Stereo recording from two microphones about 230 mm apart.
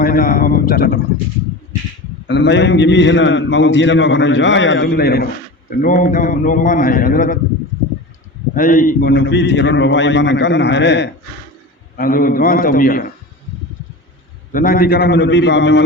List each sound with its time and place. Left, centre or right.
0.0 s a man's voice: left
2.2 s a man's voice: left
8.5 s a man's voice: left
11.9 s a man's voice: left
14.5 s a man's voice: left